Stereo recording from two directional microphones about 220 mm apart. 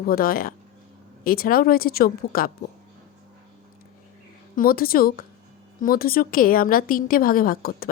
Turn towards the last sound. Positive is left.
turn(degrees=40)  # may be behind; listen again after turning